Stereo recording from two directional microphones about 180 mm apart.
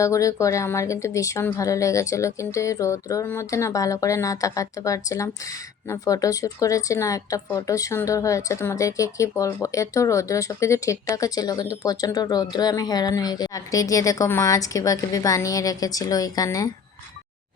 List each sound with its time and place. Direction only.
0.0 s speech: 15° left (ahead or behind)